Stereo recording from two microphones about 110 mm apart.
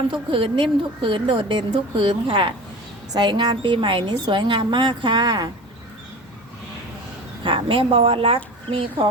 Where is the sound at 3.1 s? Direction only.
40° right (ahead or behind).